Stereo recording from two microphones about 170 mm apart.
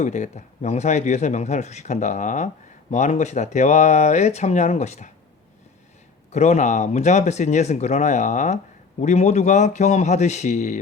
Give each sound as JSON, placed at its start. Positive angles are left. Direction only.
{"t": 0.0, "sound": "speech", "side_deg": 45}
{"t": 6.3, "sound": "speech", "side_deg": 40}